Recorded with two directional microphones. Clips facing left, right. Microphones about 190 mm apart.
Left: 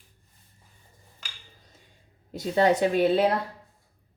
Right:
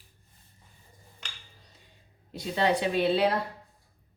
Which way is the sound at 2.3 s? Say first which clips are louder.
Left 5 dB; 45° left (ahead or behind).